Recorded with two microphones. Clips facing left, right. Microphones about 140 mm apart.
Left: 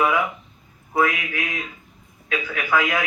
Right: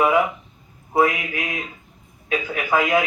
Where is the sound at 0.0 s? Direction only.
25° right (ahead or behind).